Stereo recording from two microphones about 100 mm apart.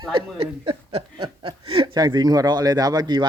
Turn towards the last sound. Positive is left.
turn(degrees=-45)  # may be behind; listen again after turning